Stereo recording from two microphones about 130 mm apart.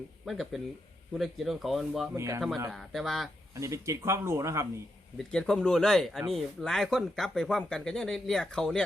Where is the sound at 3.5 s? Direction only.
20° right (ahead or behind).